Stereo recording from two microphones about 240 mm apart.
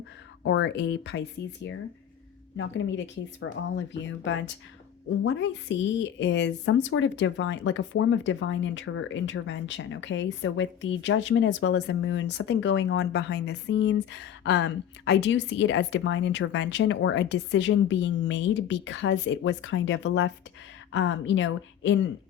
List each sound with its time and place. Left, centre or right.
0.4 s a woman's voice: left
2.6 s a woman's voice: left